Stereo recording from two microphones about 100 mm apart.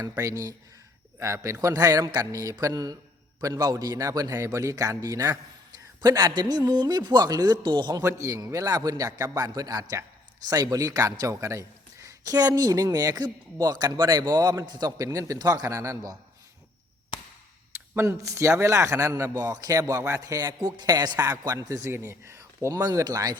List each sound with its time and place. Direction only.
0.2 s speech: 30° right (ahead or behind); by 8.0 s 50° right (ahead or behind)
8.0 s speech: 30° right (ahead or behind)
17.1 s a sound: 50° left (ahead or behind)
17.9 s speech: 30° right (ahead or behind)
20.6 s speech: 50° right (ahead or behind)